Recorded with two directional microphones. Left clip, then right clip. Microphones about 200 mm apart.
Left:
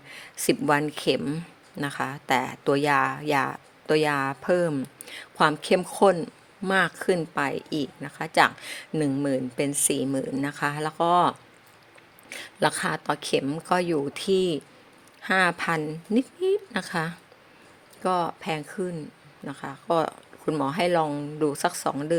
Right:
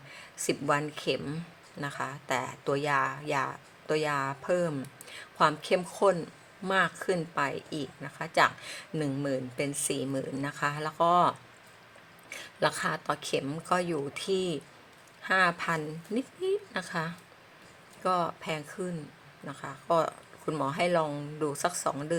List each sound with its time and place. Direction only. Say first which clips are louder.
0.1 s speech: left 7 dB; 35° left (ahead or behind)